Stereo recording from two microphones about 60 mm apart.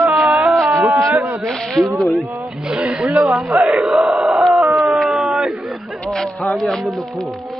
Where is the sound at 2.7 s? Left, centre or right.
Centre.